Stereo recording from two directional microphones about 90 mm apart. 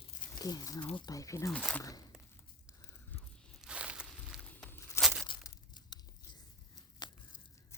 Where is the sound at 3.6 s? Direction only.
10° right (ahead or behind).